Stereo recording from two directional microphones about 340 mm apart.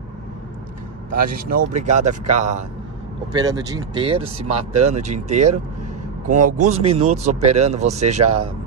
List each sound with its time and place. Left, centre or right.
1.2 s speech: right